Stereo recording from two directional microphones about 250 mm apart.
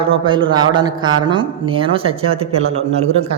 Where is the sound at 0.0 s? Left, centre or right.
Right.